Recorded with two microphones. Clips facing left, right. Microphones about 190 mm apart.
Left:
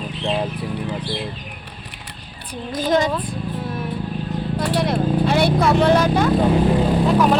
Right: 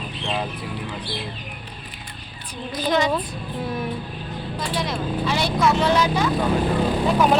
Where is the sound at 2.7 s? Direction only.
45° left (ahead or behind).